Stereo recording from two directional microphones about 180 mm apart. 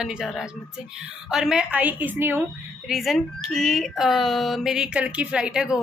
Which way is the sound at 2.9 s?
Centre (ahead or behind).